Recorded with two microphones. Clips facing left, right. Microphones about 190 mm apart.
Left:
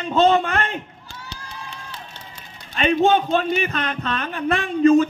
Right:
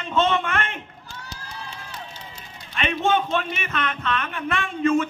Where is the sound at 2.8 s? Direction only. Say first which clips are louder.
Left 5 dB; 35° left (ahead or behind).